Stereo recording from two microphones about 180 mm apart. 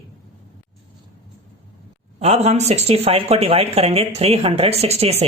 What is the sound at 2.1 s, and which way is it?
Speech, 35° right (ahead or behind).